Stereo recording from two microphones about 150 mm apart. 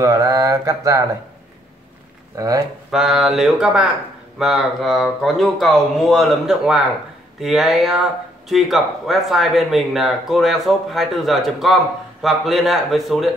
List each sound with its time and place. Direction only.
0.0 s mantra: 25° right (ahead or behind)
2.3 s mantra: 25° right (ahead or behind)
2.9 s speech: centre (ahead or behind)